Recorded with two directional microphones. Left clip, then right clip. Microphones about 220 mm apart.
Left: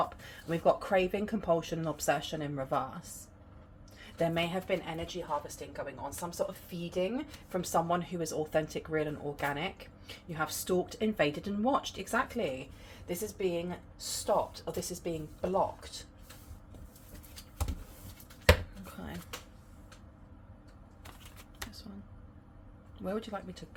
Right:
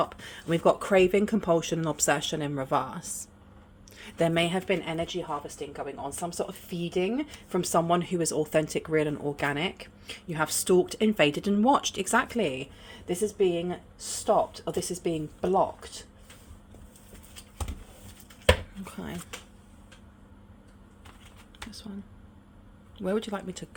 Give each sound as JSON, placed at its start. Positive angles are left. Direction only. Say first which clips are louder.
{"t": 0.0, "sound": "a woman's voice", "louder": "right 4 dB", "side_deg": -55}
{"t": 23.0, "sound": "speech", "louder": "right 7 dB", "side_deg": -35}